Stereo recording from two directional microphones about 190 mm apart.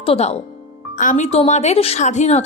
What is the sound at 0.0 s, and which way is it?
A woman's voice, 30° left (ahead or behind).